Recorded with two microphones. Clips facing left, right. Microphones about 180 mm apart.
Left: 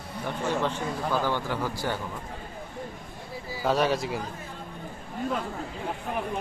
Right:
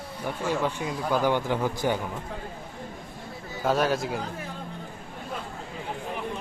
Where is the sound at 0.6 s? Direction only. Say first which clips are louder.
Right 1 dB; 15° right (ahead or behind).